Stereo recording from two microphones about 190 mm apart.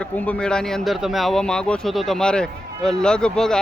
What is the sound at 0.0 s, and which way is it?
Speech, 5° left (ahead or behind).